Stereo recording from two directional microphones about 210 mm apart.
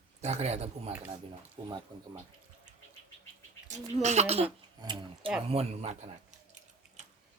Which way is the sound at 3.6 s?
35° right (ahead or behind).